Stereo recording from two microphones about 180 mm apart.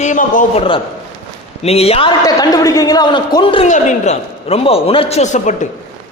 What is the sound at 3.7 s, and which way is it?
A man's voice, 40° left (ahead or behind).